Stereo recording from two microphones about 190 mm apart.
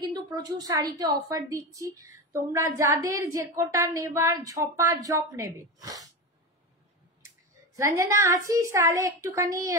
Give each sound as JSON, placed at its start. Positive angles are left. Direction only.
{"t": 0.0, "sound": "a woman's voice", "side_deg": -20}
{"t": 7.2, "sound": "a woman's voice", "side_deg": -15}